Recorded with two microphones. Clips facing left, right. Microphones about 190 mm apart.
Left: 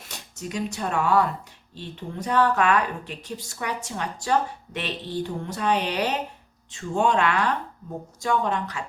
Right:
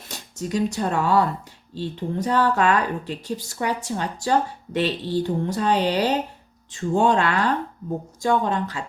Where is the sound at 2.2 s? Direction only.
30° right (ahead or behind).